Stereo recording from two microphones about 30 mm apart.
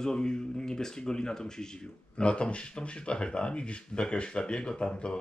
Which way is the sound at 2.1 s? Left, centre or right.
Left.